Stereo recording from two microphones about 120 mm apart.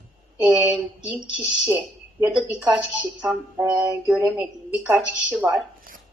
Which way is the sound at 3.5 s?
25° right (ahead or behind).